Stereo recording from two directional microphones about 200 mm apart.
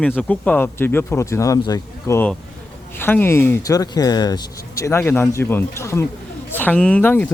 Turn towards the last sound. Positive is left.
turn(degrees=10)  # may be behind; listen again after turning